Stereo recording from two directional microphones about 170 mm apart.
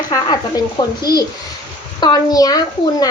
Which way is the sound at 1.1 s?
65° left (ahead or behind).